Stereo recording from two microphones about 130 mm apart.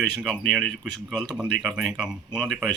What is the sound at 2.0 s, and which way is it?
Speech, 5° right (ahead or behind).